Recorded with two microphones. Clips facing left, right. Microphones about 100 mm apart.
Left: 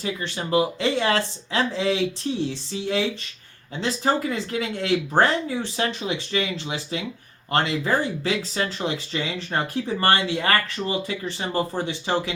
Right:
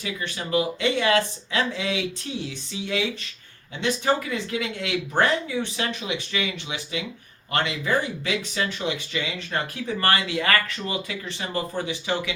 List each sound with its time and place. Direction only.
0.0 s speech: 30° left (ahead or behind)